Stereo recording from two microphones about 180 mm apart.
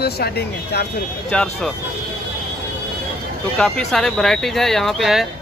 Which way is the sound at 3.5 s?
5° left (ahead or behind).